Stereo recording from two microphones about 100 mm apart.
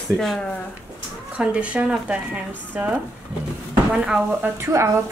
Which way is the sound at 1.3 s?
10° right (ahead or behind).